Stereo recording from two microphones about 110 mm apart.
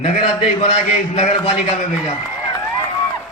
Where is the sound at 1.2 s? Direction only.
90° left.